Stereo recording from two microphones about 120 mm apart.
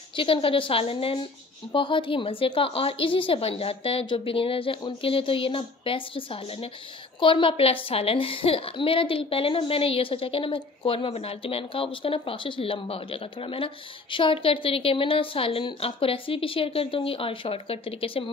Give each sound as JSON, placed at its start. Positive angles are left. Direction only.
{"t": 0.1, "sound": "a woman's voice", "side_deg": 45}